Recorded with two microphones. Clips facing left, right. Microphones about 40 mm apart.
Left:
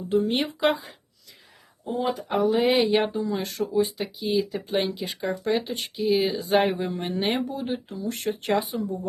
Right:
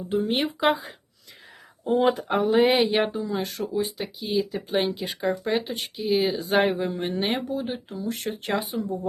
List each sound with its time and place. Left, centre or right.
0.1 s speech: centre
1.8 s speech: right
2.3 s speech: right
2.9 s speech: centre